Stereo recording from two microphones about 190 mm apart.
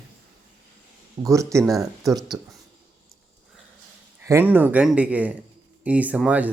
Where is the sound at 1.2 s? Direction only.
15° right (ahead or behind).